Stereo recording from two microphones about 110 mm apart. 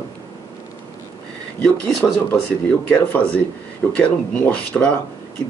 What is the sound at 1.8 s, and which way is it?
Speech, 20° left (ahead or behind).